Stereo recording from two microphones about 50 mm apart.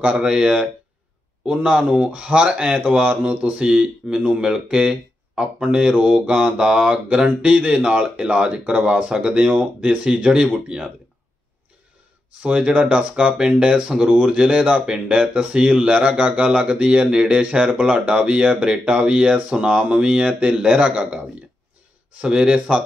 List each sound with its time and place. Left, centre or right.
0.0 s speech: right
9.5 s speech: right
12.4 s speech: right
22.2 s speech: centre